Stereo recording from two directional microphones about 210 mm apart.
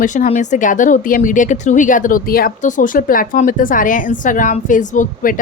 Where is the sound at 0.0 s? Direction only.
35° left (ahead or behind).